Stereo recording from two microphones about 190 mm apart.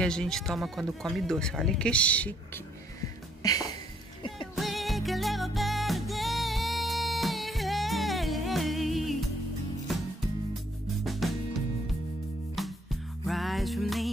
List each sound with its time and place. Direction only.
0.0 s speech: 5° left (ahead or behind)
3.4 s music: 20° left (ahead or behind)
4.6 s music: centre (ahead or behind)
11.1 s music: centre (ahead or behind)
12.6 s music: centre (ahead or behind)